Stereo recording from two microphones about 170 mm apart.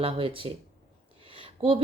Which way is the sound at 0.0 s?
30° right (ahead or behind).